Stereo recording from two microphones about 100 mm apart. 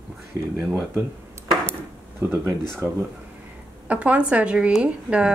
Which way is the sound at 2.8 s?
40° right (ahead or behind).